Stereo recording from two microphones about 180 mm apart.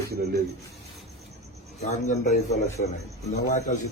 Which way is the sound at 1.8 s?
40° left (ahead or behind).